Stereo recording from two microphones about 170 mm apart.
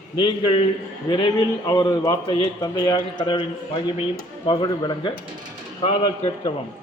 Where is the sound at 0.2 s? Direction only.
30° left (ahead or behind).